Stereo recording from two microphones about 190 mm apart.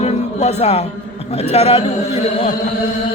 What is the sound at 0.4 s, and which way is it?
A man's voice, 35° left (ahead or behind).